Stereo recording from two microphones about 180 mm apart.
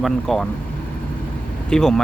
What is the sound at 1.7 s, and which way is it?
Speech, 5° left (ahead or behind).